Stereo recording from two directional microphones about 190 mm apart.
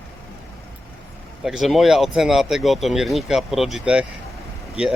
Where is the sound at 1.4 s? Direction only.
Centre (ahead or behind).